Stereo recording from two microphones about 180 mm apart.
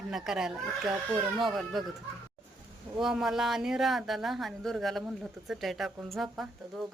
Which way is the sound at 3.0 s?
Centre (ahead or behind).